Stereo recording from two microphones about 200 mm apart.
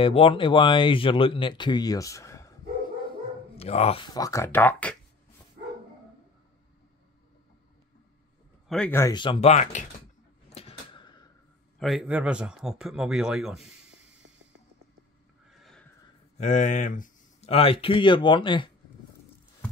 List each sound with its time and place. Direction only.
0.0 s speech: 30° left (ahead or behind)
3.5 s speech: 30° left (ahead or behind); by 4.9 s 10° left (ahead or behind)
8.6 s speech: 5° left (ahead or behind)
9.0 s speech: 25° left (ahead or behind)
10.5 s a sound: 30° left (ahead or behind)
11.8 s speech: centre (ahead or behind)
15.6 s a sound: 5° left (ahead or behind)
16.3 s speech: 35° left (ahead or behind)